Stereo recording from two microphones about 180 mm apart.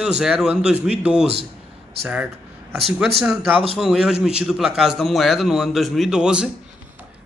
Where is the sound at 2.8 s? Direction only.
Centre (ahead or behind).